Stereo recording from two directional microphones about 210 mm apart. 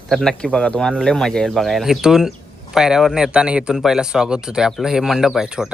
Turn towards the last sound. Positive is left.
turn(degrees=0)  # may be behind; listen again after turning